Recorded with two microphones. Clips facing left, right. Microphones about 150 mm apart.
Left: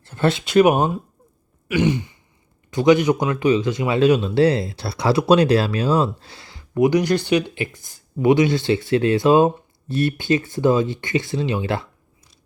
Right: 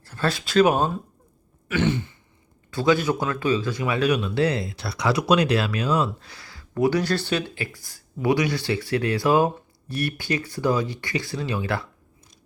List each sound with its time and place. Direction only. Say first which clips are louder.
0.0 s speech: left 6 dB; 25° left (ahead or behind)
1.6 s sigh: left 4 dB; 15° left (ahead or behind)
2.6 s speech: left 6 dB; 20° left (ahead or behind)